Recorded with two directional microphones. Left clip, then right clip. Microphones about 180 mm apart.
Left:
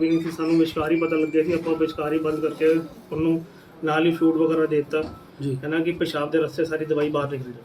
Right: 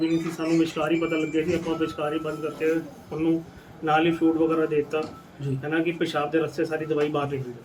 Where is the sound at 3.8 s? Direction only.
10° left (ahead or behind).